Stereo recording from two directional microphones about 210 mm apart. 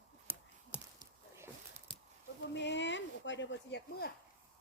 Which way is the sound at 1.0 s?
15° right (ahead or behind).